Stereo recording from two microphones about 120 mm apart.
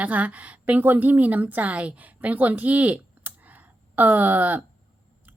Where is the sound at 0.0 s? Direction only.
10° right (ahead or behind).